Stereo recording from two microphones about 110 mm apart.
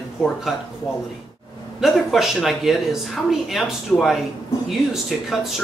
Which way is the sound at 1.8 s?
Centre (ahead or behind).